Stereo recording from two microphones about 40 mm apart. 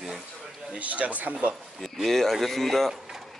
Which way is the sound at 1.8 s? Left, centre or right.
Centre.